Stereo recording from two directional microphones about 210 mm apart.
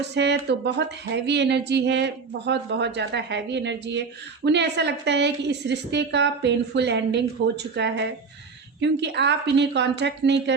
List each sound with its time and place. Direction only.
0.0 s a woman's voice: 55° right (ahead or behind)